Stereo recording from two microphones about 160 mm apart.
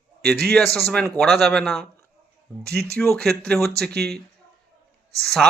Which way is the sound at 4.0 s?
85° right.